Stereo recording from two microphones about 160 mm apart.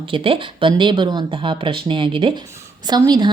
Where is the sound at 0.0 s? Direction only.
35° right (ahead or behind).